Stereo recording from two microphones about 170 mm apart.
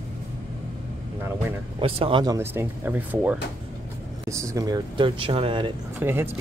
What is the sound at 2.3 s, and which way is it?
Speech, 15° right (ahead or behind).